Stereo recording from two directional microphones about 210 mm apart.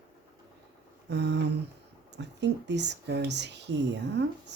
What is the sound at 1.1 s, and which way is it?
Speech, 55° right (ahead or behind).